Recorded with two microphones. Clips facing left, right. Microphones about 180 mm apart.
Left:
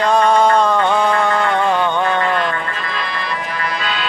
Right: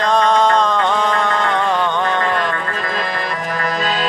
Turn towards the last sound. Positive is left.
turn(degrees=-40)  # may be behind; listen again after turning